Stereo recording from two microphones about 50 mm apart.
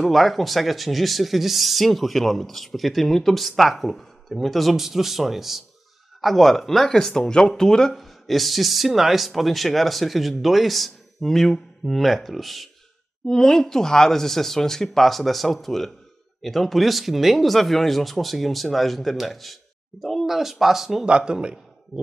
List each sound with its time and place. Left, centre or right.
0.0 s speech: centre
7.9 s speech: centre
21.3 s a man's voice: centre